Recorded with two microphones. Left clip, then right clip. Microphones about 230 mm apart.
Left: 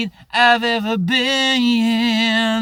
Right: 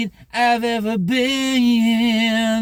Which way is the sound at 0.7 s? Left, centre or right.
Centre.